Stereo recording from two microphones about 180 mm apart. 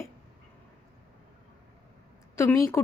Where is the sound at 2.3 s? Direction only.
15° left (ahead or behind).